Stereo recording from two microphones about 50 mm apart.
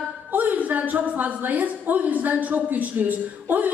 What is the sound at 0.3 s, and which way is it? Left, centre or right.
A woman's voice, right.